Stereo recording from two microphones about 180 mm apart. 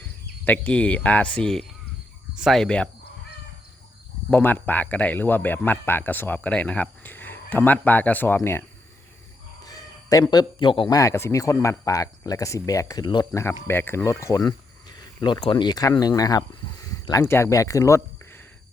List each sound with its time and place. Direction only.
0.4 s speech: 5° left (ahead or behind)
4.3 s speech: 10° left (ahead or behind)
9.6 s speech: 20° left (ahead or behind)